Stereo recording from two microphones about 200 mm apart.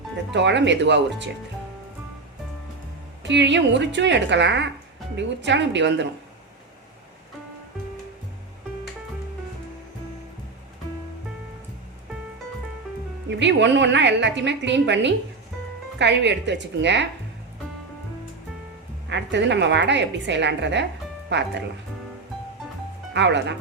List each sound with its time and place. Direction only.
0.3 s a woman's voice: 60° right (ahead or behind)
3.2 s a woman's voice: 60° right (ahead or behind)
13.2 s a woman's voice: 60° right (ahead or behind)
19.0 s a woman's voice: 60° right (ahead or behind)
23.1 s a woman's voice: 60° right (ahead or behind)